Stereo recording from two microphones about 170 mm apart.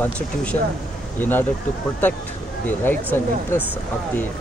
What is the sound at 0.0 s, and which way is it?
Speech, 5° left (ahead or behind).